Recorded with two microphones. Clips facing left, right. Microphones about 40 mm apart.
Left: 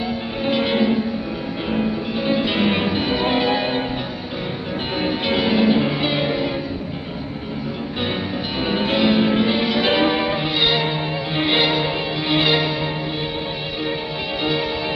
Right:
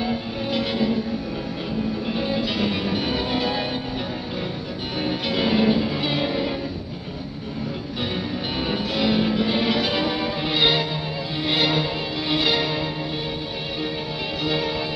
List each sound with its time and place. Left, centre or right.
0.5 s music: left
2.2 s music: left
5.0 s music: left
5.4 s music: centre
5.8 s music: left
8.7 s music: left
9.8 s music: left
10.5 s music: centre
11.3 s music: left